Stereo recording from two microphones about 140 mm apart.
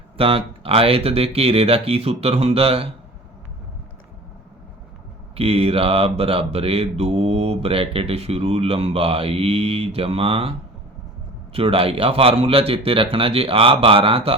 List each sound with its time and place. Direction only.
0.2 s mantra: 40° right (ahead or behind)
5.3 s mantra: 45° right (ahead or behind)
11.5 s speech: 40° right (ahead or behind)